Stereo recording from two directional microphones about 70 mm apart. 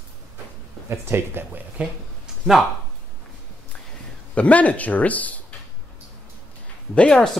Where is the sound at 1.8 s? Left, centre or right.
Centre.